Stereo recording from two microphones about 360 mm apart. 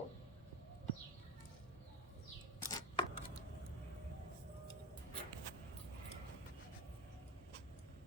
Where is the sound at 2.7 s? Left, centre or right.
Centre.